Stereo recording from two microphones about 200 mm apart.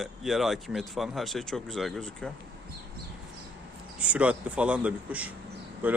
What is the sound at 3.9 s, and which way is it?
Speech, 5° right (ahead or behind).